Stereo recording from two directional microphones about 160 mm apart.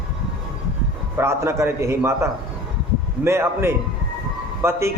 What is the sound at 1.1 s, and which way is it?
A man's voice, 15° right (ahead or behind).